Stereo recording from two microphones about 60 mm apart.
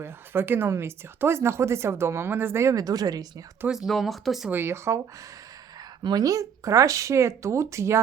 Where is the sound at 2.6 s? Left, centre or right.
Right.